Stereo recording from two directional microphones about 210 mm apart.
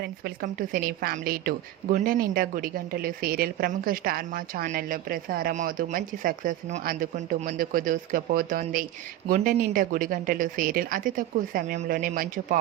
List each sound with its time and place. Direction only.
0.0 s a woman's voice: 45° right (ahead or behind)